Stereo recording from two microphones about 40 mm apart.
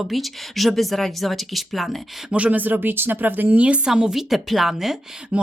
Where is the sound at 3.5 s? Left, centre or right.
Right.